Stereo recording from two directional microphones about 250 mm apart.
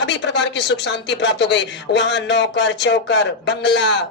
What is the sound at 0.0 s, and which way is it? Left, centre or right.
Speech, left.